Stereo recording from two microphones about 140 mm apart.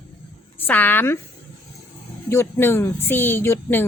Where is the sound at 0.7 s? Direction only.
15° left (ahead or behind).